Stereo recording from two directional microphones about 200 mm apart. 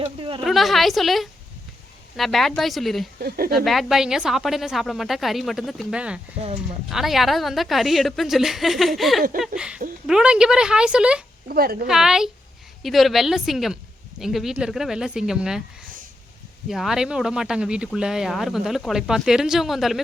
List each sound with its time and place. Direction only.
0.0 s a sound: 25° right (ahead or behind)
0.4 s speech: centre (ahead or behind)
3.2 s a woman's voice: 50° right (ahead or behind)
3.5 s speech: centre (ahead or behind)
11.4 s a woman's voice: 50° right (ahead or behind)
11.9 s speech: centre (ahead or behind)
16.6 s speech: centre (ahead or behind)